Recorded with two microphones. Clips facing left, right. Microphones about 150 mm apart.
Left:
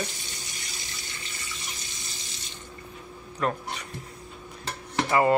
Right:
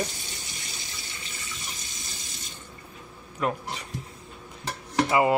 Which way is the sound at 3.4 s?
10° right (ahead or behind).